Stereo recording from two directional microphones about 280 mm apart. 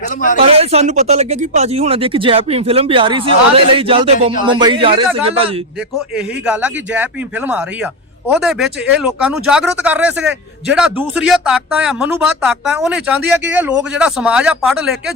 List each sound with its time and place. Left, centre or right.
0.5 s speech: right
6.1 s speech: centre